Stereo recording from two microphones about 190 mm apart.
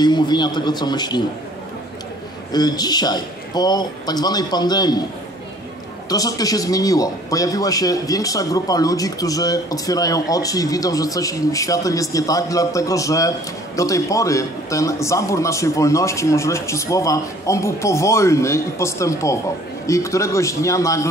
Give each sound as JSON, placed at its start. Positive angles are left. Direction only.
{"t": 0.0, "sound": "speech", "side_deg": 20}
{"t": 2.5, "sound": "speech", "side_deg": 20}
{"t": 6.0, "sound": "a man's voice", "side_deg": 20}